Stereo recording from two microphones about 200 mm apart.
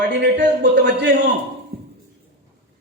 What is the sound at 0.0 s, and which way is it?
Speech, 60° right (ahead or behind).